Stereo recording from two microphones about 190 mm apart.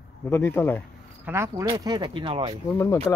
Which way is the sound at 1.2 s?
15° right (ahead or behind).